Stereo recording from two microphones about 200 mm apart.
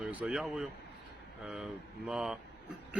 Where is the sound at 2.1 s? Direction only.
5° right (ahead or behind).